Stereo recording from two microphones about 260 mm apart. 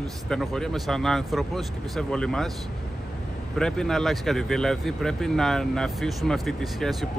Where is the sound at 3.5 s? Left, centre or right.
Centre.